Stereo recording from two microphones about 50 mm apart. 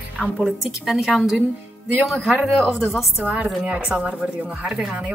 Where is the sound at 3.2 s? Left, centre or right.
Right.